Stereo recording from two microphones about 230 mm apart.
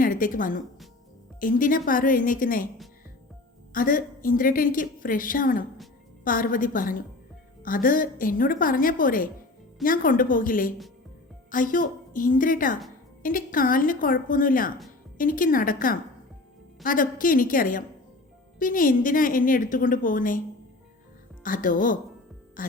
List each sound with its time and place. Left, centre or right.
0.0 s a woman's voice: left
3.7 s a woman's voice: left
21.4 s a woman's voice: left